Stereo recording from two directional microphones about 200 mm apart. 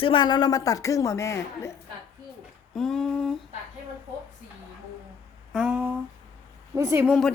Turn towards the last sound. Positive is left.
turn(degrees=-10)  # may be behind; listen again after turning